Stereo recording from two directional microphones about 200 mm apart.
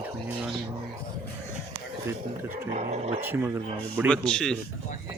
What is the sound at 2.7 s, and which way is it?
Speech, 30° right (ahead or behind).